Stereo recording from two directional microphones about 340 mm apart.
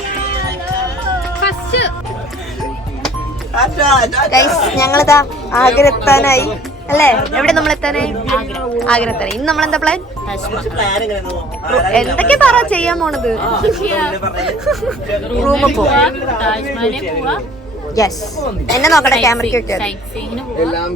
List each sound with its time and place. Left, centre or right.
1.4 s music: left
3.6 s a child's voice: centre